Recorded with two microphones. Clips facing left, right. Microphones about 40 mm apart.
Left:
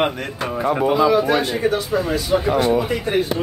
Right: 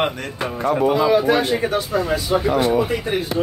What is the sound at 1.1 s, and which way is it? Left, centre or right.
Speech, right.